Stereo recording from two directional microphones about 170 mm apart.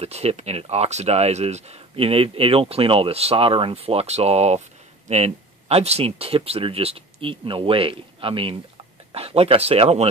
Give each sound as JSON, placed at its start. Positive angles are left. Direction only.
{"t": 0.0, "sound": "speech", "side_deg": -40}